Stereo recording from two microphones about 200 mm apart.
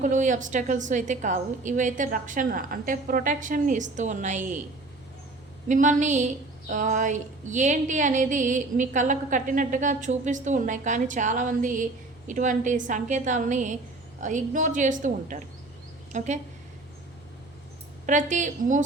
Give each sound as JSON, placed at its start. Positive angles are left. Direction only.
{"t": 0.0, "sound": "a woman's voice", "side_deg": -40}
{"t": 5.6, "sound": "a woman's voice", "side_deg": -40}
{"t": 18.0, "sound": "a woman's voice", "side_deg": -40}